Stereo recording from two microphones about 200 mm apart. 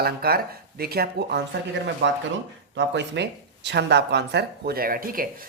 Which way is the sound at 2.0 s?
65° right (ahead or behind).